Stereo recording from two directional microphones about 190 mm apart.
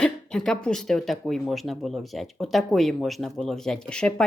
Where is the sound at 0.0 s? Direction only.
5° left (ahead or behind).